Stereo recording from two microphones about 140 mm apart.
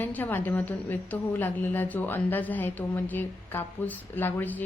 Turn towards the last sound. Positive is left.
turn(degrees=10)  # may be behind; listen again after turning